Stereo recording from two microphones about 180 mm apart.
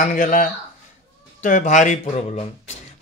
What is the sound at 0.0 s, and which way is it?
A man's voice, 45° left (ahead or behind).